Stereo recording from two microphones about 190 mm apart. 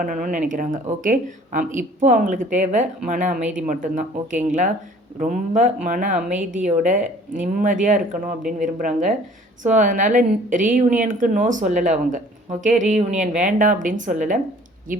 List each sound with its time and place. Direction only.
0.0 s speech: 45° right (ahead or behind)
6.1 s a woman's voice: 5° right (ahead or behind)
6.7 s a woman's voice: 40° right (ahead or behind)